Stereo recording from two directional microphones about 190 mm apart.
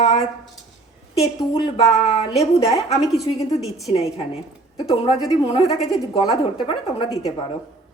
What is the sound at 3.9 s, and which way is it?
A woman's voice, 30° left (ahead or behind).